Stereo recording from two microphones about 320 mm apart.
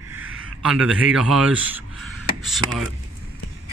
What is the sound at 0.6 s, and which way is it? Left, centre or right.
A man's voice, centre.